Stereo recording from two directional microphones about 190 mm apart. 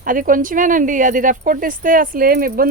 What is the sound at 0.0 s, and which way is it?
Speech, 45° right (ahead or behind).